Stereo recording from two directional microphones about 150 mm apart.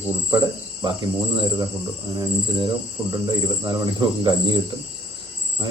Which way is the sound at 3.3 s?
25° right (ahead or behind).